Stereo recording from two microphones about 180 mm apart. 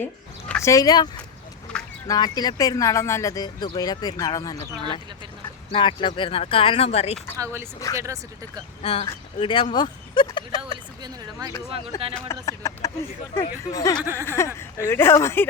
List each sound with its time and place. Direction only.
0.6 s speech: 20° left (ahead or behind)
1.7 s a sound: 5° left (ahead or behind)
2.0 s speech: 20° left (ahead or behind)
5.7 s speech: 25° left (ahead or behind)
7.3 s speech: 15° right (ahead or behind)
8.8 s speech: 30° left (ahead or behind)
10.6 s speech: 25° right (ahead or behind)
11.7 s speech: 30° right (ahead or behind)
12.3 s speech: 20° left (ahead or behind)
14.0 s speech: 15° right (ahead or behind)
14.3 s speech: 15° left (ahead or behind)